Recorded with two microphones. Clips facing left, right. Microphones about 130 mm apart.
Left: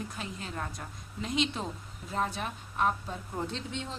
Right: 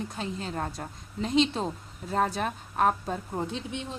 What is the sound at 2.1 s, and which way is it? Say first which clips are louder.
A woman's voice: right 5 dB; 45° right (ahead or behind).